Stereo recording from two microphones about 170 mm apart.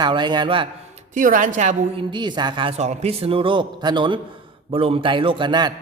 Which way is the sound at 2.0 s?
25° right (ahead or behind).